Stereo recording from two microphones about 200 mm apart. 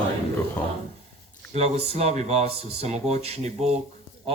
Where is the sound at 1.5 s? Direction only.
35° right (ahead or behind).